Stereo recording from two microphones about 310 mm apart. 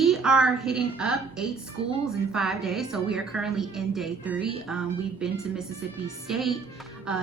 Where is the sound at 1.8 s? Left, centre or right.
Centre.